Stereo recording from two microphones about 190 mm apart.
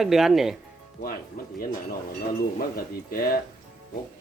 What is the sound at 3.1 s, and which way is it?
Speech, 50° left (ahead or behind).